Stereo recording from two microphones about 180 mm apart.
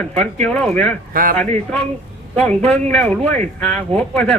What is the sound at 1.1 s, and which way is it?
Speech, 50° right (ahead or behind).